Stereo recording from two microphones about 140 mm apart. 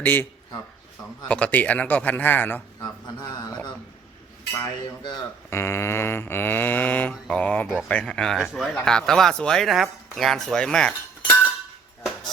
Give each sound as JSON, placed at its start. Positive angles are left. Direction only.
{"t": 0.0, "sound": "a man's voice", "side_deg": 15}
{"t": 4.5, "sound": "speech", "side_deg": 20}